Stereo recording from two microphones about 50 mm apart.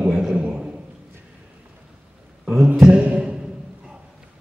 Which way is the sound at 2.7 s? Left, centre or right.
Centre.